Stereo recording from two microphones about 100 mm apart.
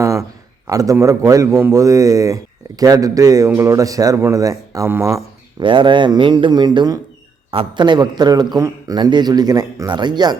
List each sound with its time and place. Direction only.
0.0 s a sound: 30° right (ahead or behind)
0.7 s speech: 35° right (ahead or behind)
5.5 s speech: 55° right (ahead or behind); by 7.0 s 40° right (ahead or behind)
7.5 s speech: 55° right (ahead or behind)
8.5 s speech: 30° right (ahead or behind)
9.0 s speech: 50° right (ahead or behind)